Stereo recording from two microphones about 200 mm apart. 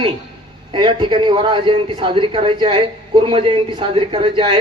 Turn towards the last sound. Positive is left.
turn(degrees=-25)  # may be behind; listen again after turning